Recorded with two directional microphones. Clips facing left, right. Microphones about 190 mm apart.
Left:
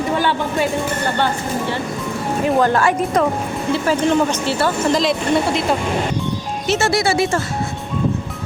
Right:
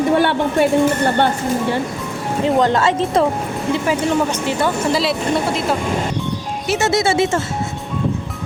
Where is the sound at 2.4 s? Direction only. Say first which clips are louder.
Right 1 dB; 20° right (ahead or behind).